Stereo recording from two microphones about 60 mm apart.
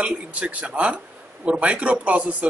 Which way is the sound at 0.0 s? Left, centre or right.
Right.